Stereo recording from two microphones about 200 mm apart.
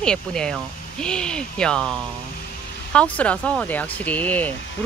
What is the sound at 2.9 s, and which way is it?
Speech, 5° left (ahead or behind).